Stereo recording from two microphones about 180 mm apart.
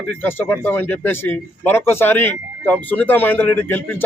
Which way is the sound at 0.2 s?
10° left (ahead or behind).